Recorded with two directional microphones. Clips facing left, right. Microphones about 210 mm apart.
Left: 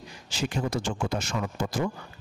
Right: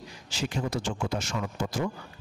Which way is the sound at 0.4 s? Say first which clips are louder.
Left 2 dB; 50° left (ahead or behind).